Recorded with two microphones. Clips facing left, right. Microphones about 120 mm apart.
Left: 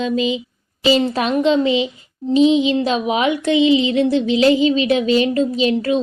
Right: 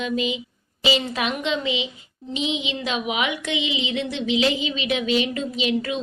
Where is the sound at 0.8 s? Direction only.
40° left (ahead or behind).